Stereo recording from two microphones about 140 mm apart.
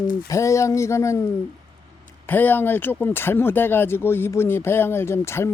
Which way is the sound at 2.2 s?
15° left (ahead or behind).